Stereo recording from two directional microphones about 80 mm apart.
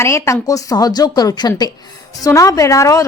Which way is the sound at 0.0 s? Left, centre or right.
Left.